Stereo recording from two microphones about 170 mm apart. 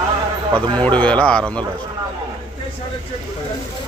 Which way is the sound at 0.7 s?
10° left (ahead or behind).